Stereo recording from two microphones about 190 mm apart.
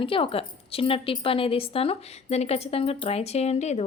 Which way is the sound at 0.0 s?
30° left (ahead or behind).